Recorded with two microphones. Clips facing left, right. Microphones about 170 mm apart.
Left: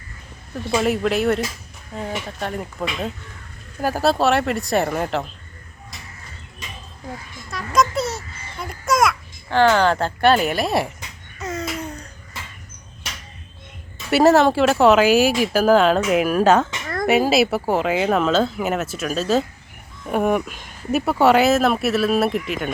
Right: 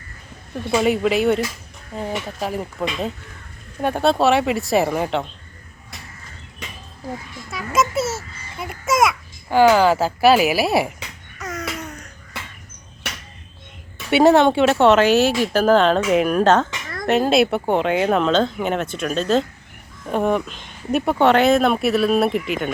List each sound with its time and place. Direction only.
0.7 s speech: centre (ahead or behind)
7.5 s babbling: 5° right (ahead or behind)
11.3 s babbling: 25° left (ahead or behind)
11.8 s a sound: 30° left (ahead or behind)
14.1 s speech: centre (ahead or behind)